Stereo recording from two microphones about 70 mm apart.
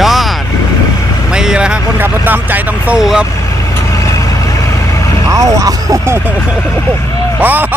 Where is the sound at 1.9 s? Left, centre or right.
Right.